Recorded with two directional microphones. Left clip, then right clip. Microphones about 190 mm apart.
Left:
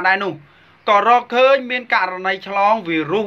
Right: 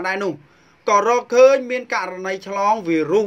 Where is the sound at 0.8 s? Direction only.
45° right (ahead or behind).